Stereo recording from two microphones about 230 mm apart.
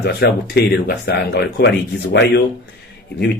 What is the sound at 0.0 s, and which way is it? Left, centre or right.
A man's voice, left.